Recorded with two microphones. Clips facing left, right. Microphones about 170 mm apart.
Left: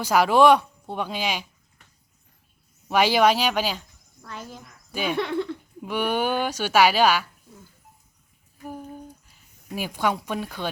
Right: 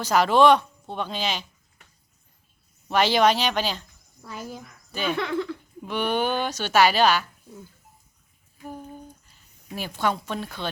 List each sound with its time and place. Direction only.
0.0 s a woman's voice: 10° left (ahead or behind)
2.9 s a woman's voice: 10° left (ahead or behind)
4.2 s speech: 10° right (ahead or behind)
4.9 s speech: 10° left (ahead or behind)
5.1 s speech: 20° left (ahead or behind)
5.8 s a woman's voice: 10° left (ahead or behind)
8.6 s a sound: 10° left (ahead or behind)